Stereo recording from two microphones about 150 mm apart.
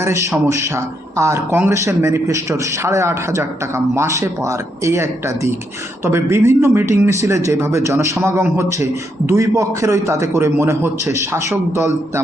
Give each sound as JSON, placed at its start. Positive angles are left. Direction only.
{"t": 0.0, "sound": "speech", "side_deg": -20}